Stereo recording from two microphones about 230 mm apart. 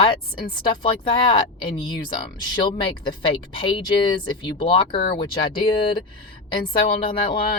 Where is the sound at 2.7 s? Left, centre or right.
Left.